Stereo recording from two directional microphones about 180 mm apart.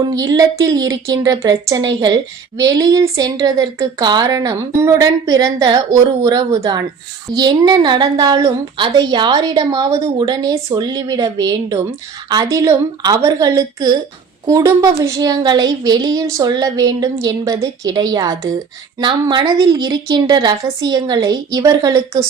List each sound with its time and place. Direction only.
0.0 s a woman's voice: 20° right (ahead or behind)